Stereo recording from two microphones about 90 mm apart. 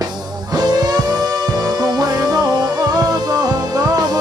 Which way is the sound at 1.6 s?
45° right (ahead or behind).